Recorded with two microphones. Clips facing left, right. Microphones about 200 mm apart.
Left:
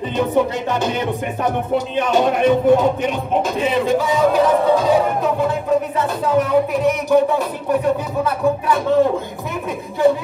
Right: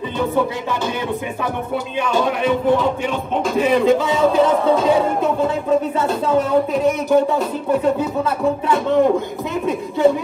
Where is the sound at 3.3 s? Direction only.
Centre (ahead or behind).